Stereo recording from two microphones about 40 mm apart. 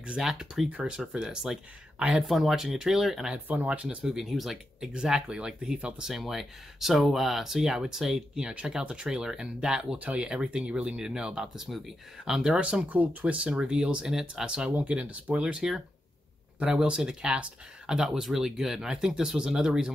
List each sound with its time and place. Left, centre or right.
0.2 s speech: centre
2.1 s speech: centre
3.6 s speech: right
4.2 s speech: centre
4.9 s speech: centre
6.1 s speech: centre
8.4 s speech: right
9.9 s speech: right
10.2 s speech: right
12.8 s speech: right
14.7 s speech: right; by 19.9 s centre